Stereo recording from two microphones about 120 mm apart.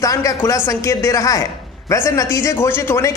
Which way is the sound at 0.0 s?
30° left (ahead or behind).